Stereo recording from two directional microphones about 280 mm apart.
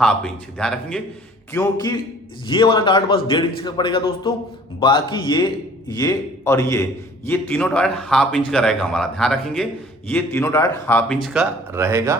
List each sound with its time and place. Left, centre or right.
0.0 s speech: centre
1.5 s a man's voice: centre